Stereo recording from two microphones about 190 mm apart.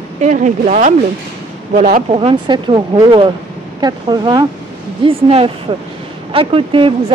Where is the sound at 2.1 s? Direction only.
30° right (ahead or behind).